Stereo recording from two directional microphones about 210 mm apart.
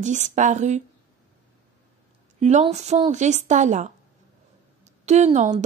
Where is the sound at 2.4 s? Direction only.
30° right (ahead or behind).